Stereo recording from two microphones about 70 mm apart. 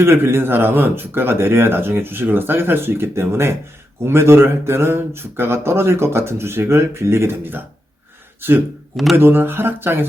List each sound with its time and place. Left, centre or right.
0.0 s speech: right